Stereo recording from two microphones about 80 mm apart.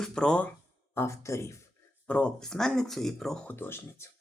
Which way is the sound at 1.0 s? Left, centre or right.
Left.